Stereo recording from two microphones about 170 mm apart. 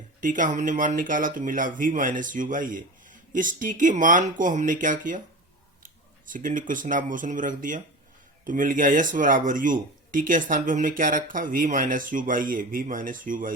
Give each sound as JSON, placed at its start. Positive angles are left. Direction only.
{"t": 0.2, "sound": "speech", "side_deg": -50}